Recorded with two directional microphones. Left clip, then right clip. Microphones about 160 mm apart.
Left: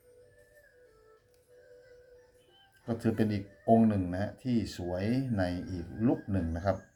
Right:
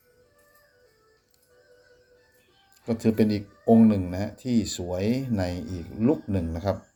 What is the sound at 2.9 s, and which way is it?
Speech, 45° right (ahead or behind).